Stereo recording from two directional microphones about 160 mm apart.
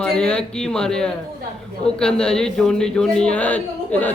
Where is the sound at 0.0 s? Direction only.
5° left (ahead or behind).